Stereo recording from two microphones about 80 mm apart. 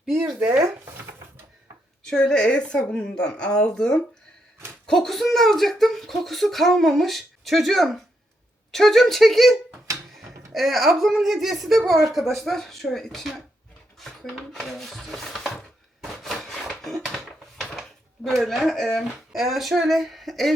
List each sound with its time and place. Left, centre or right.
0.3 s chopping: centre
2.0 s speech: centre
16.0 s a sound: centre